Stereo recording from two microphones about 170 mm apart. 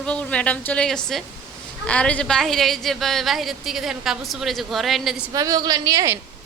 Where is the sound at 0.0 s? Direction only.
5° left (ahead or behind).